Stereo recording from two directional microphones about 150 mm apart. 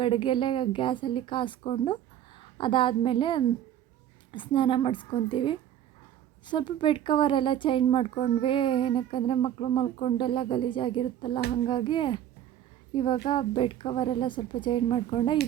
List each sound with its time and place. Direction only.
0.0 s a woman's voice: 35° left (ahead or behind)